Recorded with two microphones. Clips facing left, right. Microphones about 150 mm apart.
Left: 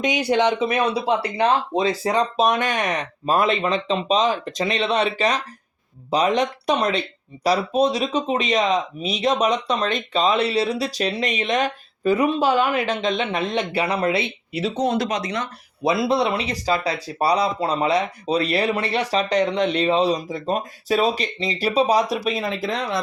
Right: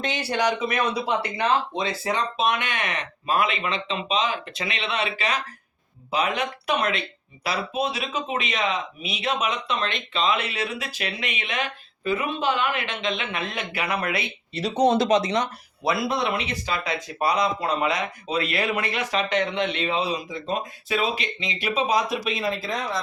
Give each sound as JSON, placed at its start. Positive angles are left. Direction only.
{"t": 0.0, "sound": "speech", "side_deg": 15}
{"t": 14.8, "sound": "speech", "side_deg": -25}
{"t": 15.8, "sound": "speech", "side_deg": 20}